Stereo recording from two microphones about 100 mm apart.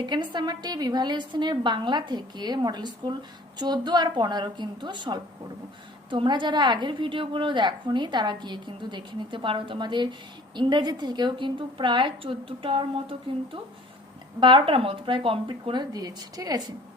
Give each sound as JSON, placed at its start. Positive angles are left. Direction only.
{"t": 0.0, "sound": "a woman's voice", "side_deg": -50}